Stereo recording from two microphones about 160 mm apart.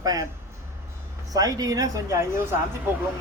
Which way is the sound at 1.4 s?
25° right (ahead or behind).